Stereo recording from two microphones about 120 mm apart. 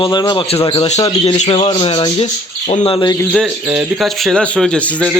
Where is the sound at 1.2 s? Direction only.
60° left (ahead or behind).